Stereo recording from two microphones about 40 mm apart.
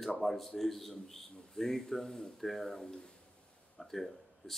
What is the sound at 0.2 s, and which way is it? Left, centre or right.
A man's voice, centre.